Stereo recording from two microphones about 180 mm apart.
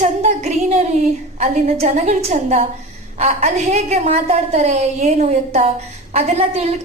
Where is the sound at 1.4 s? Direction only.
40° right (ahead or behind).